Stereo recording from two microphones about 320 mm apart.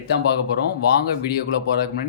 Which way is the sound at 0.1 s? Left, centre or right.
Left.